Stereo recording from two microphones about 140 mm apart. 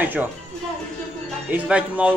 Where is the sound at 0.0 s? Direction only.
10° right (ahead or behind).